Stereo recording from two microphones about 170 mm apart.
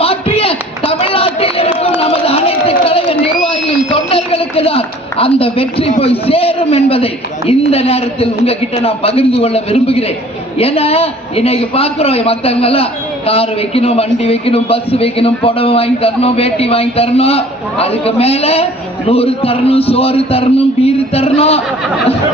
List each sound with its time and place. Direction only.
0.0 s a sound: 35° left (ahead or behind)
2.0 s crowd: 35° left (ahead or behind)
6.0 s a man's voice: 35° left (ahead or behind)